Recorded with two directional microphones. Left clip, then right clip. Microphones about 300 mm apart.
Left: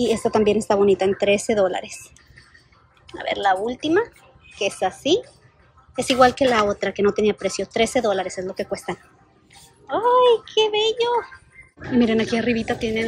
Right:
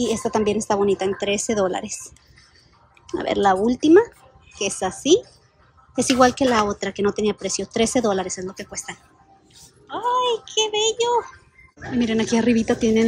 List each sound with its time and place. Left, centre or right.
0.0 s speech: centre